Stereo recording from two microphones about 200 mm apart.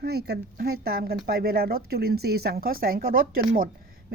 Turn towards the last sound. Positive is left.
turn(degrees=-45)  # may be behind; listen again after turning